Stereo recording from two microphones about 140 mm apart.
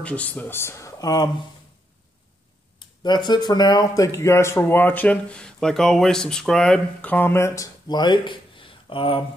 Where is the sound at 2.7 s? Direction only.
30° left (ahead or behind).